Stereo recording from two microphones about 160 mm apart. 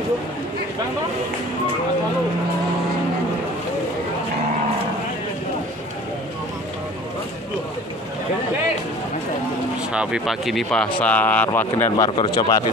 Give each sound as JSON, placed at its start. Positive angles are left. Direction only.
{"t": 9.9, "sound": "speech", "side_deg": -5}
{"t": 12.2, "sound": "a man's voice", "side_deg": 25}